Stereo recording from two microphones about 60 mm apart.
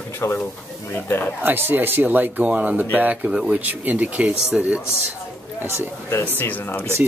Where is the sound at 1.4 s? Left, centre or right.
Right.